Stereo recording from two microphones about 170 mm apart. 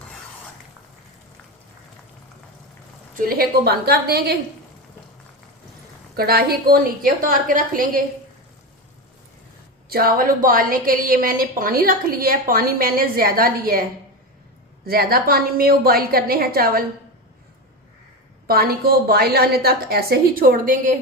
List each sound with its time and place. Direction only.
3.2 s a woman's voice: 60° right (ahead or behind)
6.1 s a woman's voice: 65° right (ahead or behind)
9.9 s a woman's voice: 60° right (ahead or behind)
14.8 s a woman's voice: 65° right (ahead or behind)
18.4 s a woman's voice: 65° right (ahead or behind)